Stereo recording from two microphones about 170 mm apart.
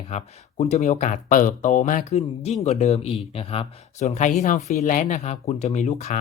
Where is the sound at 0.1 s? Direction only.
40° left (ahead or behind).